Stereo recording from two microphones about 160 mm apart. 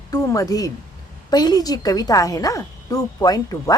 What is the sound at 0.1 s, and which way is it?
Speech, 20° left (ahead or behind).